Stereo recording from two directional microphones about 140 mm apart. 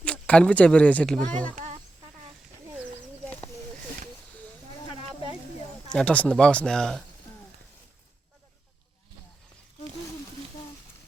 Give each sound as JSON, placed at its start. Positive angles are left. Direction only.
{"t": 0.0, "sound": "speech", "side_deg": 10}
{"t": 1.5, "sound": "a sound", "side_deg": -55}
{"t": 5.9, "sound": "speech", "side_deg": 10}